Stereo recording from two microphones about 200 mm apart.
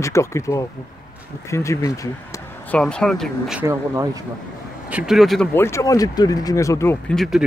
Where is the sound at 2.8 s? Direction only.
5° left (ahead or behind).